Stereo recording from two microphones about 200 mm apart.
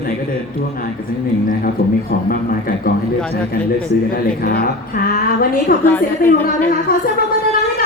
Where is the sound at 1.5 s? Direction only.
45° left (ahead or behind).